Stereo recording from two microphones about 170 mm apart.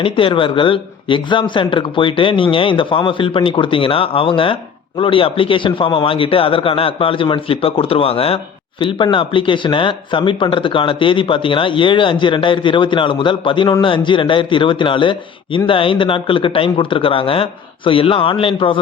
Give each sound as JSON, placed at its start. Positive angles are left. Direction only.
{"t": 0.0, "sound": "speech", "side_deg": 30}